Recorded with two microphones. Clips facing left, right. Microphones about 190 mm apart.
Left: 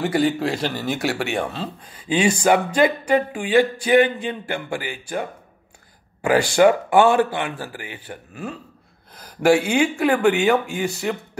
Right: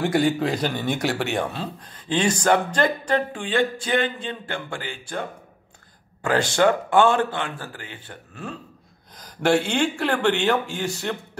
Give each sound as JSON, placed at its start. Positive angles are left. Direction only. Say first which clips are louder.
{"t": 0.0, "sound": "speech", "louder": "left 1 dB", "side_deg": 0}